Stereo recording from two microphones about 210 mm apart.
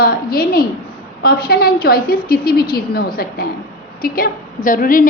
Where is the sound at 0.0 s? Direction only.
45° left (ahead or behind).